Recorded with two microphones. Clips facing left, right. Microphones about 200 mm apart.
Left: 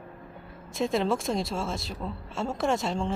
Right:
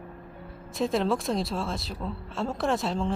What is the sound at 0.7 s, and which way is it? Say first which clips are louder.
A woman's voice: even; centre (ahead or behind).